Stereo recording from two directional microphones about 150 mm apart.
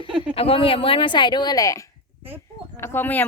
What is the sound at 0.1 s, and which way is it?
Speech, 10° right (ahead or behind).